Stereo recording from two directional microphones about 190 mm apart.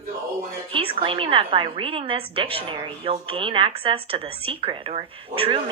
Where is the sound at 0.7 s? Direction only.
30° right (ahead or behind).